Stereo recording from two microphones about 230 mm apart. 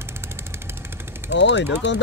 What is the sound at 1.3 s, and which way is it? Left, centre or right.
Speech, left.